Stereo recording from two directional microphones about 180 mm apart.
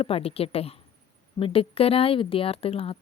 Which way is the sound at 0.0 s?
30° left (ahead or behind).